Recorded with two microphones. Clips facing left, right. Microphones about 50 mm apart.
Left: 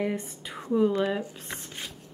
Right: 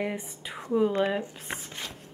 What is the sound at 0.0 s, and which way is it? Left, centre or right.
Speech, centre.